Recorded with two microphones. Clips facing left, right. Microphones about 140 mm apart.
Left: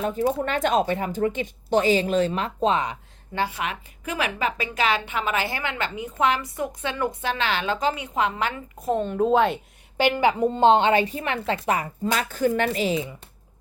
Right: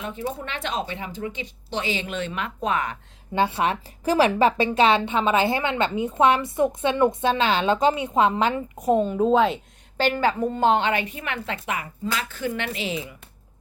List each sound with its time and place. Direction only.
0.0 s speech: 40° left (ahead or behind); by 3.0 s 20° left (ahead or behind)
3.3 s a woman's voice: 25° right (ahead or behind); by 9.6 s centre (ahead or behind)
10.0 s a woman's voice: 15° left (ahead or behind); by 13.1 s 35° left (ahead or behind)